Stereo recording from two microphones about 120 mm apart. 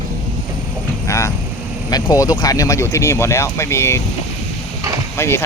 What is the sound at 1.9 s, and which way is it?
Speech, 35° left (ahead or behind).